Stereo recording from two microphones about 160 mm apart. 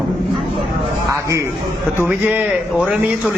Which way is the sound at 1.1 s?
20° right (ahead or behind).